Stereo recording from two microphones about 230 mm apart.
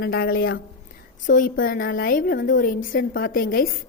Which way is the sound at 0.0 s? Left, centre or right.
Left.